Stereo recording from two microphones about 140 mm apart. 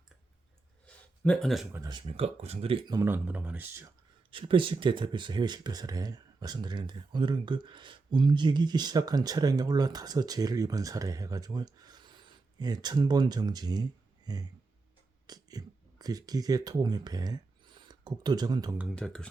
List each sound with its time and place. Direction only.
0.9 s a sound: 10° left (ahead or behind)
1.9 s speech: 40° right (ahead or behind)
2.9 s speech: 20° right (ahead or behind)
4.3 s speech: 35° right (ahead or behind)
18.9 s speech: 5° left (ahead or behind)